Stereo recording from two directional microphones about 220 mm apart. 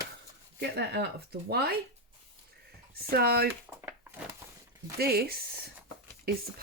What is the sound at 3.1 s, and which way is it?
Speech, 45° right (ahead or behind).